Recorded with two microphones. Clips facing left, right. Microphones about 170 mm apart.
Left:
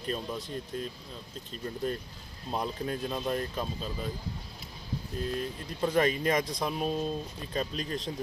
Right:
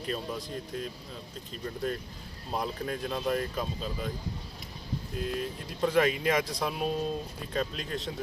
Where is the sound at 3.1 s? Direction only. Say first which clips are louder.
Right 5 dB; 5° left (ahead or behind).